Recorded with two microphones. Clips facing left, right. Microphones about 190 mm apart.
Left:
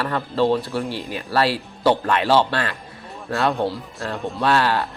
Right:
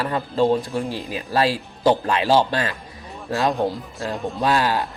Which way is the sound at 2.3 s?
15° right (ahead or behind).